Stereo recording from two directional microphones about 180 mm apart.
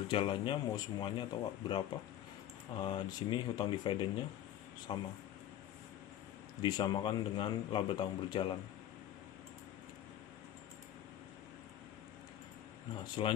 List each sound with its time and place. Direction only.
0.1 s a man's voice: 25° left (ahead or behind)
6.6 s a man's voice: 25° left (ahead or behind)
13.0 s a man's voice: 25° left (ahead or behind)